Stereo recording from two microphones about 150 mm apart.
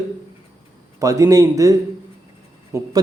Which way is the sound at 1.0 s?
20° right (ahead or behind).